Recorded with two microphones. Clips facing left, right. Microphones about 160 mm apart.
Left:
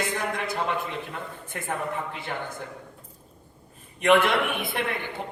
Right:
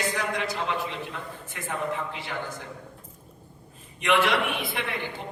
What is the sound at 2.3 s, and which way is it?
Speech, 35° left (ahead or behind).